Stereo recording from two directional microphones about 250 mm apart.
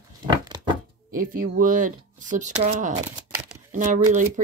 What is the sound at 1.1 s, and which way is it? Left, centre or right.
Speech, right.